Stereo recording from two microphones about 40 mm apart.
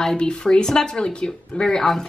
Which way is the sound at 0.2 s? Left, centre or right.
Left.